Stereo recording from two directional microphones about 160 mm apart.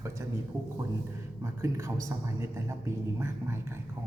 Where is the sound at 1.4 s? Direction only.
20° right (ahead or behind).